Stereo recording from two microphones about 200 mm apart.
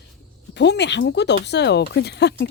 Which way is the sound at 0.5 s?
60° left (ahead or behind).